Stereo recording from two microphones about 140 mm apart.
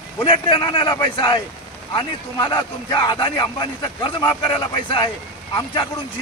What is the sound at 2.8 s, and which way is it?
Speech, 35° left (ahead or behind).